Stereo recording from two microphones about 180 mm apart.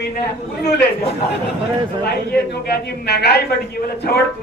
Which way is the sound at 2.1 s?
60° left (ahead or behind).